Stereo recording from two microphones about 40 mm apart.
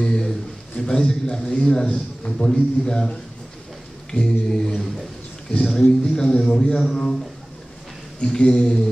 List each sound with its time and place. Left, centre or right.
0.0 s a sound: centre
0.7 s a man's voice: centre
8.3 s speech: centre